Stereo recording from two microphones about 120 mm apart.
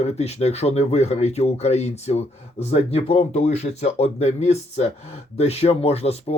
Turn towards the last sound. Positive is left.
turn(degrees=60)  # may be behind; listen again after turning